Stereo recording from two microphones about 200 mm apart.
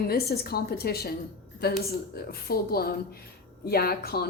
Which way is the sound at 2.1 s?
50° left (ahead or behind).